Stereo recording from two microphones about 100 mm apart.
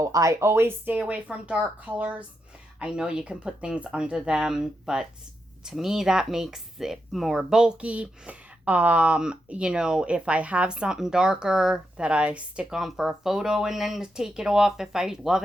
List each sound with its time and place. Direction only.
0.0 s speech: 30° right (ahead or behind); by 15.4 s 5° right (ahead or behind)